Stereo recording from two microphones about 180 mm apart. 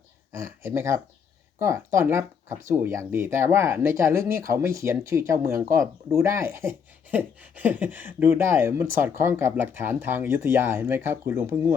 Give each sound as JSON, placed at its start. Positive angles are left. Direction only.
{"t": 0.3, "sound": "speech", "side_deg": -15}